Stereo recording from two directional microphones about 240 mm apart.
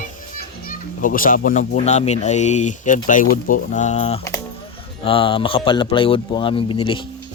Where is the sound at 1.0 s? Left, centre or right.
Left.